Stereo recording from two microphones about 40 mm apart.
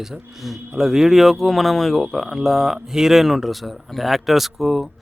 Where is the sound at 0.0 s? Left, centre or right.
Centre.